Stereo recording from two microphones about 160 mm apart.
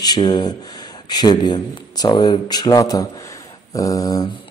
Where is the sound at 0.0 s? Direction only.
25° left (ahead or behind).